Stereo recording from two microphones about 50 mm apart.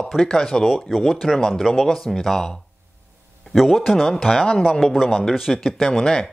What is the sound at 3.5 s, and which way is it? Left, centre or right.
A man's voice, centre.